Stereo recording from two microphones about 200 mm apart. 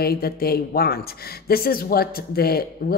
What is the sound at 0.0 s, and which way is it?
Speech, 50° left (ahead or behind).